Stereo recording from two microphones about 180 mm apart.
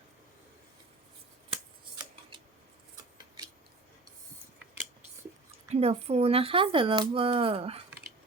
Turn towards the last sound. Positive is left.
turn(degrees=-30)  # may be behind; listen again after turning